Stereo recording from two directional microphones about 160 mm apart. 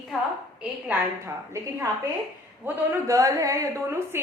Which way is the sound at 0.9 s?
15° right (ahead or behind).